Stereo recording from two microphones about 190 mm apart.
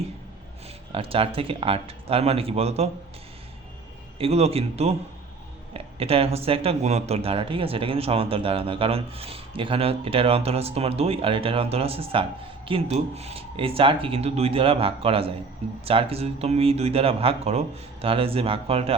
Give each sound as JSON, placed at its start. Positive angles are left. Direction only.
{"t": 0.9, "sound": "speech", "side_deg": -30}
{"t": 4.2, "sound": "speech", "side_deg": -30}